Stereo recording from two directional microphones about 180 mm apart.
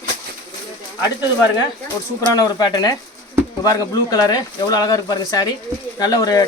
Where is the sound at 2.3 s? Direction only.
20° left (ahead or behind).